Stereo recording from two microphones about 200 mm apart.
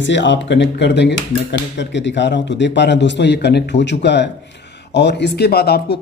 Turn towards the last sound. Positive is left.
turn(degrees=55)  # may be behind; listen again after turning